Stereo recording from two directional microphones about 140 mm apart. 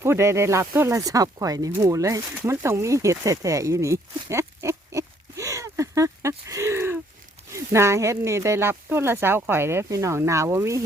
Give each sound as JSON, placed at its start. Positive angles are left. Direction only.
{"t": 0.0, "sound": "speech", "side_deg": -20}